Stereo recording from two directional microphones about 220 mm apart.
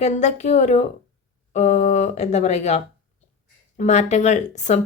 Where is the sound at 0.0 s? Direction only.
30° left (ahead or behind).